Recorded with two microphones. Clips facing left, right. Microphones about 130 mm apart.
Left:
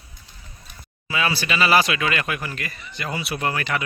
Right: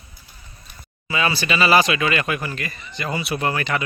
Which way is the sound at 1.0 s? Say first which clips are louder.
Right 2 dB; 5° left (ahead or behind).